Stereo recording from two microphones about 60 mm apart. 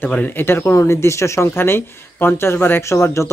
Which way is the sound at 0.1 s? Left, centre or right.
Left.